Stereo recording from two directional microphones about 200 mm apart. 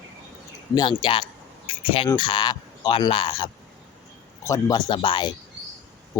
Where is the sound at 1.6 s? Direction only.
25° left (ahead or behind).